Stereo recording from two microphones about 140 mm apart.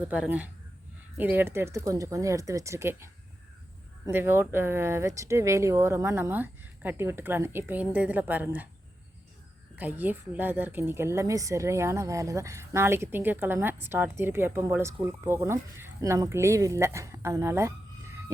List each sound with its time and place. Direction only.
0.1 s a woman's voice: 10° right (ahead or behind)
4.1 s a woman's voice: 15° right (ahead or behind)
9.7 s a woman's voice: 10° right (ahead or behind)